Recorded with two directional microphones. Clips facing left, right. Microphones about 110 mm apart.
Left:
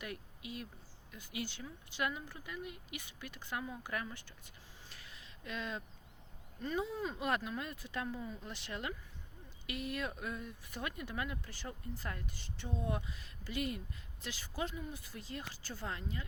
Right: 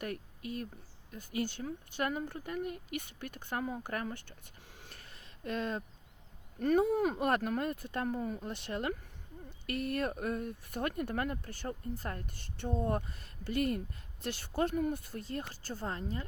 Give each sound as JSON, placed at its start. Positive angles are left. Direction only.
{"t": 0.0, "sound": "speech", "side_deg": -45}